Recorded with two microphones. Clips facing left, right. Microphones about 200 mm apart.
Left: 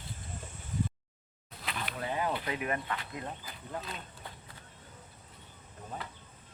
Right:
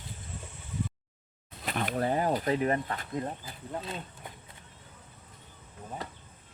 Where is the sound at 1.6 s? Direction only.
45° right (ahead or behind); by 4.3 s 25° right (ahead or behind).